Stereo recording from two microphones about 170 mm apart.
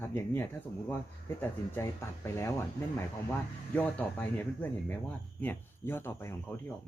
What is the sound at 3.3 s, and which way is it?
Speech, 10° left (ahead or behind).